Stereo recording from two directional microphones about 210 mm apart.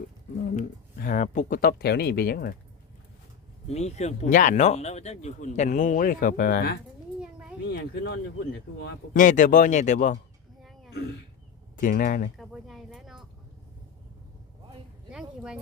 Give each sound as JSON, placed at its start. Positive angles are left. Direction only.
{"t": 1.0, "sound": "speech", "side_deg": 40}
{"t": 3.7, "sound": "speech", "side_deg": 30}
{"t": 7.2, "sound": "a sound", "side_deg": -5}
{"t": 7.6, "sound": "speech", "side_deg": 50}
{"t": 9.1, "sound": "speech", "side_deg": 35}
{"t": 11.8, "sound": "speech", "side_deg": 40}
{"t": 12.4, "sound": "speech", "side_deg": 0}
{"t": 15.1, "sound": "speech", "side_deg": -5}